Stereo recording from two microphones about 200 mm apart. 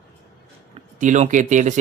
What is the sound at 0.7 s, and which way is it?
Speech, 35° right (ahead or behind).